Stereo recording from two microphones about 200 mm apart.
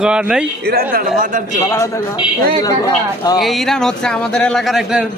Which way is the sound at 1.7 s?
15° left (ahead or behind).